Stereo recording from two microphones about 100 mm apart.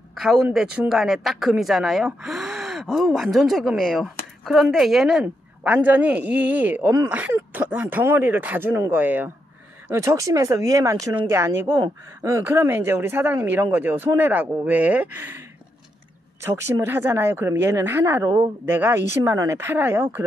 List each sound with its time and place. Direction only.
0.1 s speech: 5° right (ahead or behind)
5.2 s a man's voice: 15° right (ahead or behind)
9.8 s speech: 30° right (ahead or behind)
16.3 s speech: 30° right (ahead or behind)